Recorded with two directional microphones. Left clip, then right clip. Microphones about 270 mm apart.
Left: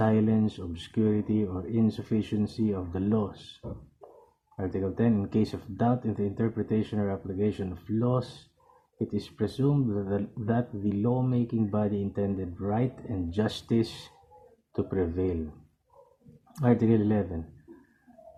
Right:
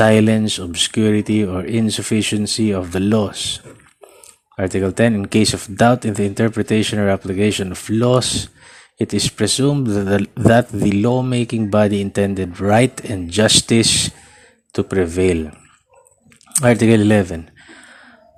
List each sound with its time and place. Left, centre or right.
0.0 s speech: right
4.5 s speech: right
16.7 s speech: right